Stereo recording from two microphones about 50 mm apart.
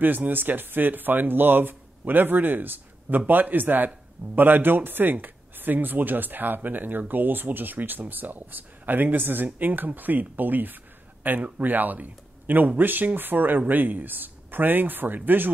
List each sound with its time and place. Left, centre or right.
0.0 s speech: right